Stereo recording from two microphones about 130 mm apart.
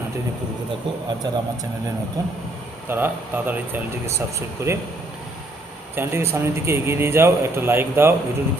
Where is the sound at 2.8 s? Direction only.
15° right (ahead or behind).